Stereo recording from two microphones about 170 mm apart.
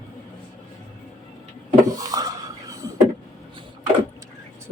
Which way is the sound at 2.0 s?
20° right (ahead or behind).